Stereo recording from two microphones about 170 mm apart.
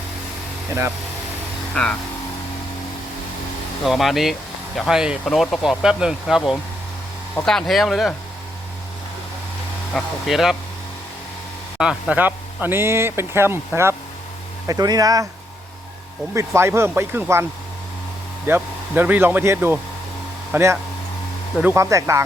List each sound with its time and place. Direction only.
0.7 s speech: 15° right (ahead or behind)
1.7 s speech: 5° left (ahead or behind)
3.8 s speech: centre (ahead or behind)
9.9 s speech: centre (ahead or behind)
11.8 s speech: 5° right (ahead or behind)
16.3 s speech: 15° right (ahead or behind)
18.4 s speech: 10° right (ahead or behind)